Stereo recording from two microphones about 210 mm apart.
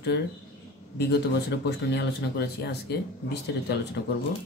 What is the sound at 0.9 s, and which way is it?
A man's voice, 50° left (ahead or behind).